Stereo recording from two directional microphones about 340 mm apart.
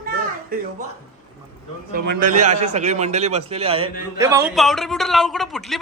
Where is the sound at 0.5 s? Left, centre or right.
Right.